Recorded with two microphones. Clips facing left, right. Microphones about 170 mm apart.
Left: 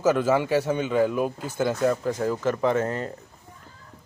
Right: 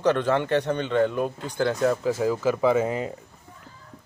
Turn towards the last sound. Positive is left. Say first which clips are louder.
# right 2 dB
turn(degrees=-10)  # may be behind; listen again after turning